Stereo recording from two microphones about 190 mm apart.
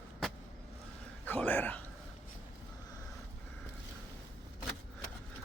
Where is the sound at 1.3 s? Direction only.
10° left (ahead or behind).